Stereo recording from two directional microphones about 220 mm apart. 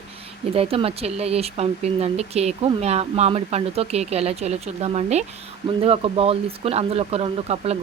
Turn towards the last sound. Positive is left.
turn(degrees=-25)  # may be behind; listen again after turning